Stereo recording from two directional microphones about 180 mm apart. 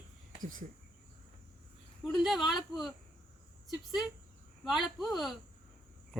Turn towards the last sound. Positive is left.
turn(degrees=0)  # may be behind; listen again after turning